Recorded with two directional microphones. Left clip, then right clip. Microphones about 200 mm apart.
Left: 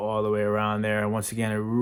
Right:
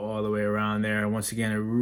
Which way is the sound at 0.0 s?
35° left (ahead or behind).